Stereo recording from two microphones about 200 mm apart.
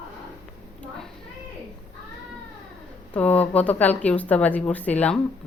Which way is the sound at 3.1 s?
5° left (ahead or behind).